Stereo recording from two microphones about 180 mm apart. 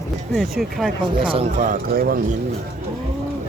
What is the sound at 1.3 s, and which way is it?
Speech, 45° right (ahead or behind).